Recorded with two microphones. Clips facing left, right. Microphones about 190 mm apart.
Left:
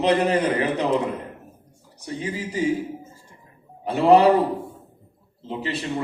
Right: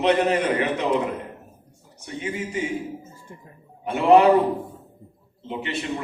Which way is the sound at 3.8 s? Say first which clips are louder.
Even; 35° left (ahead or behind).